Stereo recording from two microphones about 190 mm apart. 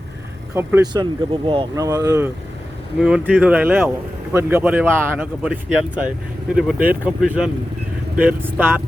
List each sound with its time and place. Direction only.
0.5 s a man's voice: 15° right (ahead or behind)
3.0 s a man's voice: 5° right (ahead or behind)